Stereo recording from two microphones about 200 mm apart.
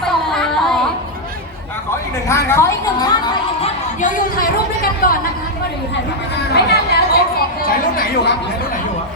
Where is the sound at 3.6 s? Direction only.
40° left (ahead or behind).